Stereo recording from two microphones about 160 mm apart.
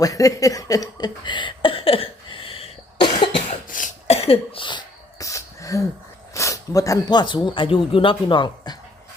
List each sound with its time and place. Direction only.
0.0 s a sound: 20° left (ahead or behind)
4.0 s cough: 40° left (ahead or behind); by 5.8 s 20° left (ahead or behind)
6.3 s speech: 20° left (ahead or behind)